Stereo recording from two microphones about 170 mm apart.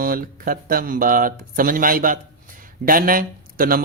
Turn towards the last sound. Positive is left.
turn(degrees=-55)  # may be behind; listen again after turning